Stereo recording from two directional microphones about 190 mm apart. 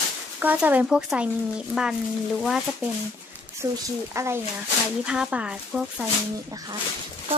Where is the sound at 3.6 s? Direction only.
15° right (ahead or behind).